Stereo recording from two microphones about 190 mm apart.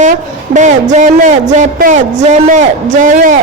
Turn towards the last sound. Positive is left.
turn(degrees=-45)  # may be behind; listen again after turning